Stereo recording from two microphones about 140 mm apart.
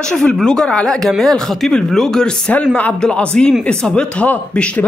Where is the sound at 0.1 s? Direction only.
5° left (ahead or behind).